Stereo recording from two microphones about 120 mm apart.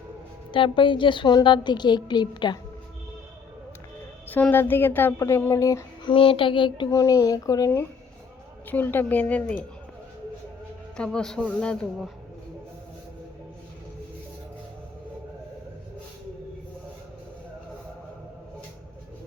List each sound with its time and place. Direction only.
0.5 s a woman's voice: 45° left (ahead or behind)
4.3 s speech: 15° left (ahead or behind)
6.1 s child singing: 45° left (ahead or behind)
6.9 s speech: 25° left (ahead or behind)
8.6 s speech: 15° left (ahead or behind)
10.9 s speech: 5° left (ahead or behind)